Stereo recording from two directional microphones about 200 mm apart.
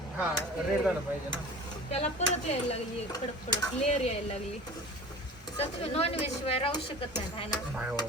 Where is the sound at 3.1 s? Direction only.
20° left (ahead or behind).